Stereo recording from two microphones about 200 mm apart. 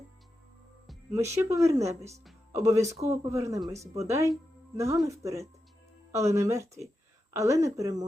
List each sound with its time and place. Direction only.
1.1 s speech: 15° right (ahead or behind)